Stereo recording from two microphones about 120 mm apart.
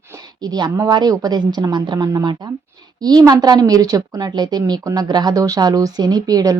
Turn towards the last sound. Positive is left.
turn(degrees=-30)  # may be behind; listen again after turning